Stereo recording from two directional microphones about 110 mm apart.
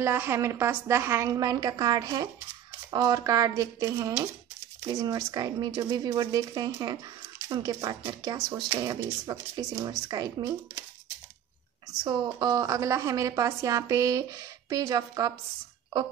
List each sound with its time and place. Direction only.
0.0 s a woman's voice: 20° right (ahead or behind)
1.3 s a woman's voice: 35° right (ahead or behind)
12.0 s a woman's voice: 40° right (ahead or behind)